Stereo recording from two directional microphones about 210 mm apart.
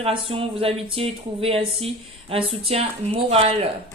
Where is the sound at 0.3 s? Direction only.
25° right (ahead or behind).